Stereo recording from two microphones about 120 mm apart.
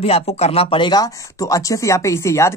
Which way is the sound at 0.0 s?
60° left (ahead or behind).